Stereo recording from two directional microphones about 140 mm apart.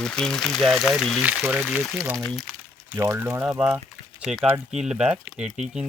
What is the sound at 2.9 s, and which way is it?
Speech, 15° right (ahead or behind).